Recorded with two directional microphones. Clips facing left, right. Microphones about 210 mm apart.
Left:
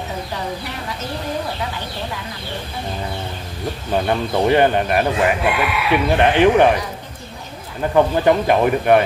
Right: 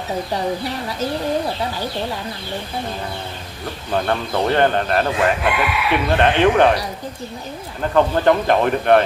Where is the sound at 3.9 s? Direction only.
10° left (ahead or behind).